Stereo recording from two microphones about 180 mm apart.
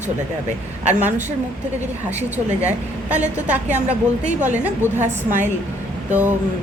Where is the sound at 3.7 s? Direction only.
40° right (ahead or behind).